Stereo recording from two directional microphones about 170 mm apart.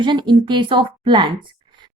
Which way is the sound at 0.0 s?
30° right (ahead or behind).